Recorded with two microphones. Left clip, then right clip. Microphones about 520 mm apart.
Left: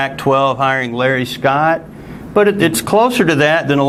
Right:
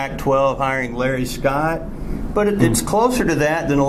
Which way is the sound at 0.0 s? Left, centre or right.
Left.